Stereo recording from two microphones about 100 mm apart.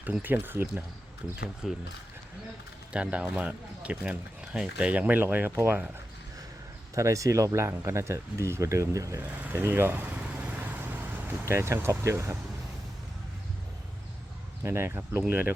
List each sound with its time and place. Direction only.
0.0 s speech: 15° right (ahead or behind)
1.6 s speech: centre (ahead or behind)
2.9 s speech: 10° right (ahead or behind)
6.9 s speech: 30° right (ahead or behind)
9.2 s vehicle: 15° right (ahead or behind)
11.4 s speech: 25° right (ahead or behind)
14.6 s speech: 25° right (ahead or behind)